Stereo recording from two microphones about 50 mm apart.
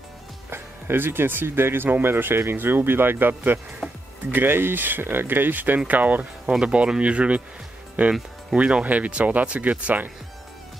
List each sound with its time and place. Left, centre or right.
0.5 s speech: right
3.8 s a sound: centre
4.3 s speech: right